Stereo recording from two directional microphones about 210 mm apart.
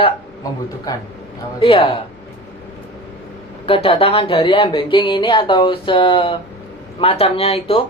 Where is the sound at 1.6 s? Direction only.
25° left (ahead or behind).